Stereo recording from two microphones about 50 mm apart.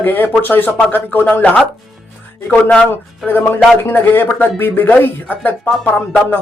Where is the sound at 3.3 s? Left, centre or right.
Left.